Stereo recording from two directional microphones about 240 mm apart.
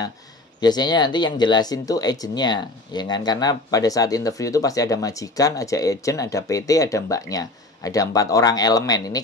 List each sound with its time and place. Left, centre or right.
0.6 s speech: centre